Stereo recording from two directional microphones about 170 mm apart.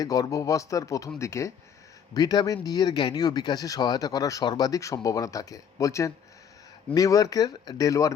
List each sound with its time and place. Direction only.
0.0 s speech: 20° left (ahead or behind)